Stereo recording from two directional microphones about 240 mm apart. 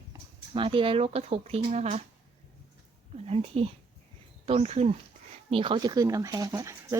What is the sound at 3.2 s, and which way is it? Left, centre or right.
Speech, right.